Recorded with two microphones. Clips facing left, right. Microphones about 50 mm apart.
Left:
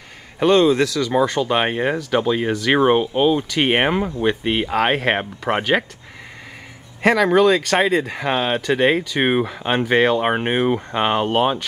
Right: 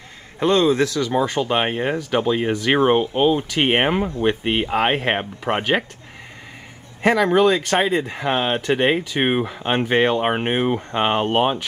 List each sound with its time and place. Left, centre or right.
0.4 s a man's voice: left
0.8 s speech: right
1.5 s speech: centre
7.0 s speech: centre
10.4 s speech: centre